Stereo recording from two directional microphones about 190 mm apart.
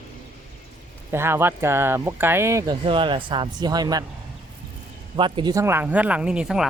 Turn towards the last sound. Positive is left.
turn(degrees=-5)  # may be behind; listen again after turning